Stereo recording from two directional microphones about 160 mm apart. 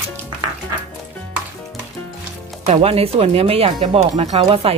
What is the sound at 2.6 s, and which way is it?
Speech, 40° right (ahead or behind).